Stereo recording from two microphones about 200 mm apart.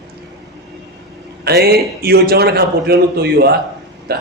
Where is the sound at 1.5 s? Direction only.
55° right (ahead or behind).